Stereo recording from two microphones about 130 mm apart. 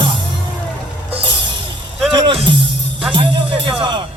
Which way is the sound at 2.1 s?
35° right (ahead or behind).